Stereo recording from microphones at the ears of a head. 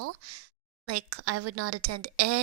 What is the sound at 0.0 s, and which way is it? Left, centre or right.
Speech, right.